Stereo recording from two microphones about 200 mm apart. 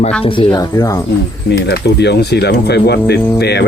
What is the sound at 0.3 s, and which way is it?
Speech, 25° left (ahead or behind).